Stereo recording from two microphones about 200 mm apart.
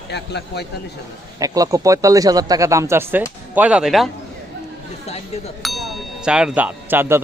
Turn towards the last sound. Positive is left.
turn(degrees=-10)  # may be behind; listen again after turning